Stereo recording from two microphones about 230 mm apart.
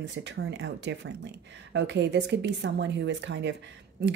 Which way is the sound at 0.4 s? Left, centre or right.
Right.